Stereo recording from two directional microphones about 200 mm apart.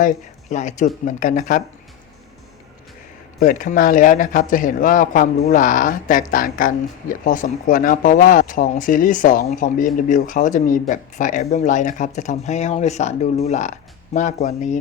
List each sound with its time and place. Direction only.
0.5 s speech: 40° left (ahead or behind)
3.4 s speech: 40° left (ahead or behind)